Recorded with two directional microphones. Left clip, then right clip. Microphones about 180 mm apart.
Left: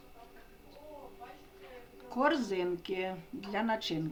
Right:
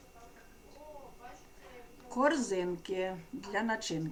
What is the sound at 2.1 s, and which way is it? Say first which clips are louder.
Speech: even; 15° left (ahead or behind).